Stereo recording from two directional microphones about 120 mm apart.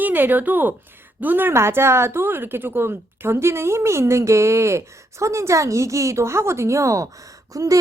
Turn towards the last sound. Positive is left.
turn(degrees=-30)  # may be behind; listen again after turning